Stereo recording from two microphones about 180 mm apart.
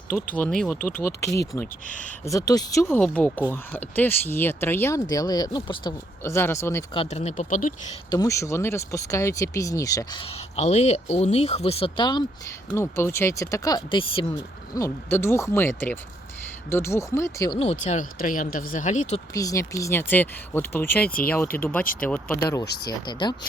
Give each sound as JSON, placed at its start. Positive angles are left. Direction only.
{"t": 0.3, "sound": "speech", "side_deg": 5}
{"t": 0.8, "sound": "speech", "side_deg": 50}
{"t": 2.5, "sound": "speech", "side_deg": 20}
{"t": 3.0, "sound": "speech", "side_deg": 10}
{"t": 6.9, "sound": "speech", "side_deg": 35}
{"t": 8.1, "sound": "speech", "side_deg": 20}
{"t": 12.7, "sound": "speech", "side_deg": 15}
{"t": 14.8, "sound": "speech", "side_deg": 15}
{"t": 17.6, "sound": "speech", "side_deg": 40}
{"t": 19.3, "sound": "speech", "side_deg": 20}
{"t": 22.6, "sound": "speech", "side_deg": 65}
{"t": 22.9, "sound": "speech", "side_deg": 25}